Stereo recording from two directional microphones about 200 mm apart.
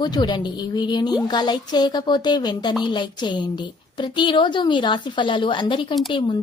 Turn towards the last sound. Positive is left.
turn(degrees=25)  # may be behind; listen again after turning